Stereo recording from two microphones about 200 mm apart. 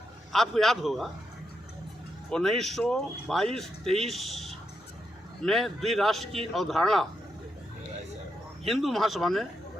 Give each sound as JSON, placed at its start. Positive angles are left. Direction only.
{"t": 0.3, "sound": "speech", "side_deg": 0}
{"t": 2.3, "sound": "speech", "side_deg": 0}
{"t": 8.6, "sound": "speech", "side_deg": 0}